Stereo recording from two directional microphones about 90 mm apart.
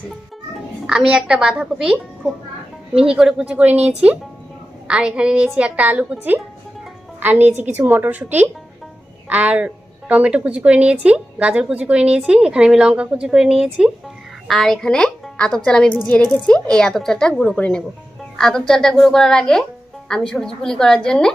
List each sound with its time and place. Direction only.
0.8 s a woman's voice: 10° right (ahead or behind)
14.5 s a woman's voice: 5° left (ahead or behind)